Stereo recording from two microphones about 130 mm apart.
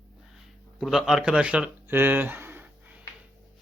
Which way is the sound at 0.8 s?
5° right (ahead or behind).